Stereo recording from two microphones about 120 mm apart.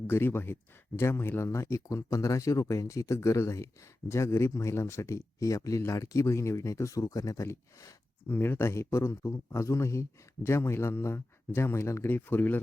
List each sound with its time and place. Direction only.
0.1 s speech: 20° left (ahead or behind)